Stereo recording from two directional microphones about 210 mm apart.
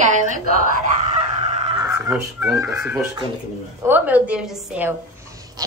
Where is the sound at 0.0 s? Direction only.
35° right (ahead or behind).